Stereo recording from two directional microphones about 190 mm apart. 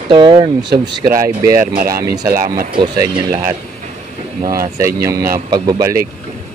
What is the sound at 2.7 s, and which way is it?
Speech, 20° right (ahead or behind).